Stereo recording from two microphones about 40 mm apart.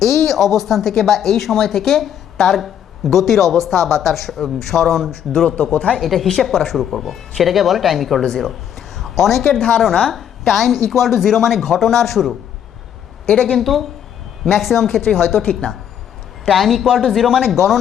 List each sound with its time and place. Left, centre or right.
0.0 s a woman's voice: centre
5.7 s speech: left
6.0 s a woman's voice: centre
8.2 s a woman's voice: centre
9.0 s a woman's voice: centre
13.2 s a woman's voice: left
13.6 s a woman's voice: centre
15.4 s a woman's voice: left
16.5 s a woman's voice: centre